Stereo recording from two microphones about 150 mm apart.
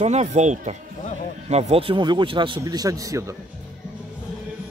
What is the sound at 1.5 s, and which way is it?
A man's voice, 40° right (ahead or behind).